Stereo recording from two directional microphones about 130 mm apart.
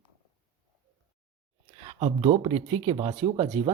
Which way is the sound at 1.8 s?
45° right (ahead or behind).